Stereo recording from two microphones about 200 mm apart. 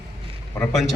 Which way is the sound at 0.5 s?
5° left (ahead or behind).